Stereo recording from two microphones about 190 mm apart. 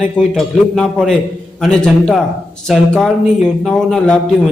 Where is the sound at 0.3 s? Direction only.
Centre (ahead or behind).